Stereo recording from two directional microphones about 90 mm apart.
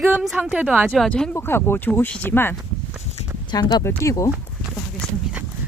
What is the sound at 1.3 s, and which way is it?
Speech, 25° left (ahead or behind).